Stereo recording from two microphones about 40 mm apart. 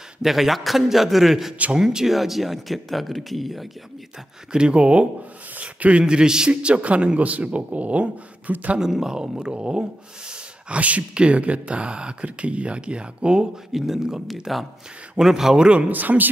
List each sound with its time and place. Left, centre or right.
0.2 s speech: centre
4.5 s speech: right
6.0 s a man's voice: centre; by 8.7 s right
8.7 s speech: centre
13.7 s speech: centre
15.5 s speech: right
15.9 s speech: right